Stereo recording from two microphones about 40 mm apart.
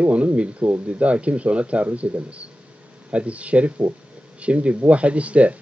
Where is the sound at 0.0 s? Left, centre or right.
Right.